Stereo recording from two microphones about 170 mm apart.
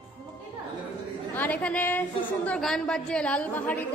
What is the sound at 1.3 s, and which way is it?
A woman's voice, 10° left (ahead or behind).